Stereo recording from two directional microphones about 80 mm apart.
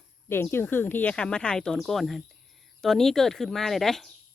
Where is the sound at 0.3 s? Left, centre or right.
Left.